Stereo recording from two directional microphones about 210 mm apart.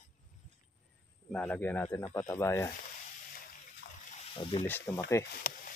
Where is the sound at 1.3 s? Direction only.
5° left (ahead or behind).